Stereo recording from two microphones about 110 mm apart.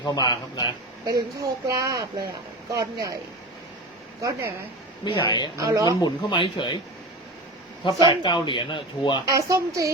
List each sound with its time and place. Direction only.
0.0 s a man's voice: 40° left (ahead or behind)
1.0 s speech: 35° right (ahead or behind)
4.2 s speech: 30° right (ahead or behind)
5.0 s speech: 45° left (ahead or behind)
5.5 s speech: 30° right (ahead or behind)
6.0 s speech: 45° left (ahead or behind)
8.0 s speech: 45° left (ahead or behind)
9.2 s speech: 30° right (ahead or behind)